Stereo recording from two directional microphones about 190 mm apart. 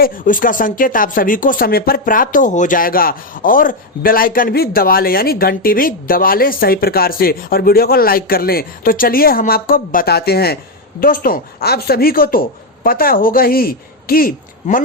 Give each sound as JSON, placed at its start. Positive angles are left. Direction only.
{"t": 0.0, "sound": "speech", "side_deg": 45}